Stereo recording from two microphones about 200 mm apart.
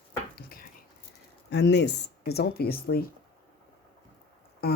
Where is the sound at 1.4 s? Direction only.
60° left (ahead or behind).